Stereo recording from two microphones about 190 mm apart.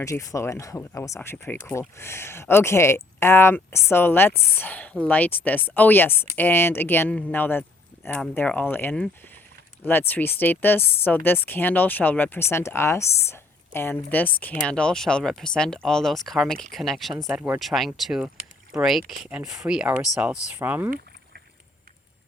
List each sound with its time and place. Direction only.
0.0 s speech: 15° left (ahead or behind); by 20.9 s 10° right (ahead or behind)